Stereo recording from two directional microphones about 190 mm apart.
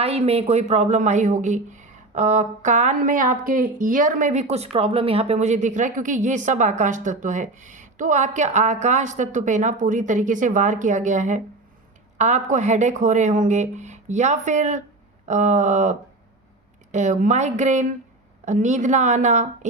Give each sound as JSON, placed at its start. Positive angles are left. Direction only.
{"t": 0.0, "sound": "a woman's voice", "side_deg": -30}